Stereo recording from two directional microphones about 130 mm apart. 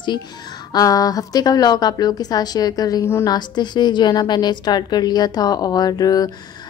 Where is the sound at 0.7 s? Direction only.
30° left (ahead or behind).